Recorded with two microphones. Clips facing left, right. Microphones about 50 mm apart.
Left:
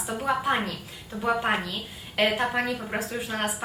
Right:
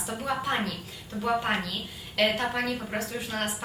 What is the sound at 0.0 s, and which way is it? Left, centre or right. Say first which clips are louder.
A woman's voice: left 4 dB; centre.